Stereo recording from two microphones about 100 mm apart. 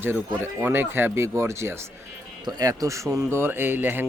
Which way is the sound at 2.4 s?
40° right (ahead or behind).